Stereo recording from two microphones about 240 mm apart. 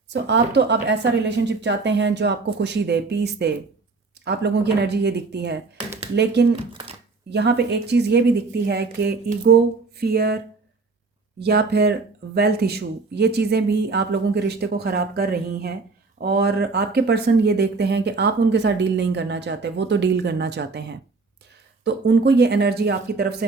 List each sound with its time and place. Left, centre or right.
0.1 s speech: right